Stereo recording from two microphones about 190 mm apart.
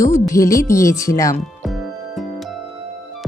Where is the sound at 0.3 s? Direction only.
15° left (ahead or behind).